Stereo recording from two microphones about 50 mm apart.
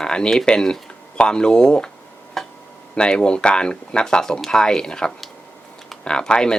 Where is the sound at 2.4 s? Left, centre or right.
Centre.